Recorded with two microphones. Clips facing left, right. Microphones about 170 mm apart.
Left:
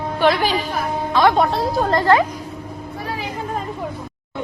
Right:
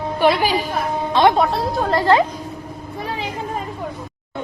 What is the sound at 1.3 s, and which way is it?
Speech, centre (ahead or behind).